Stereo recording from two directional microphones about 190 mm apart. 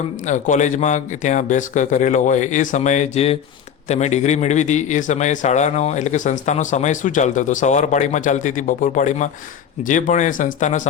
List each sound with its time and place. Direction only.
0.3 s a man's voice: 40° left (ahead or behind)